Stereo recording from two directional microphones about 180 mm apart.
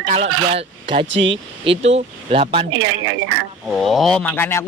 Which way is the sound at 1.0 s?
90° right.